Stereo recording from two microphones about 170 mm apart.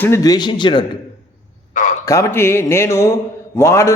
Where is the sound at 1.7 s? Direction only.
45° left (ahead or behind).